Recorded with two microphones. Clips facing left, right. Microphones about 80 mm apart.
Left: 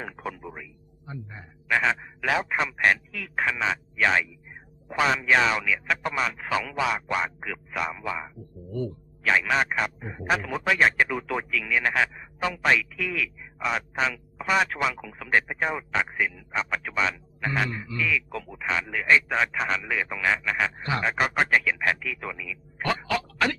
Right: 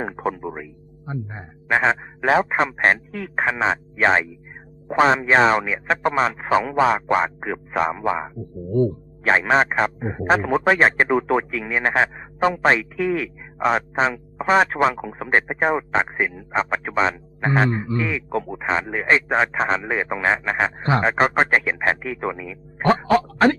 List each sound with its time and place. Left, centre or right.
0.0 s speech: right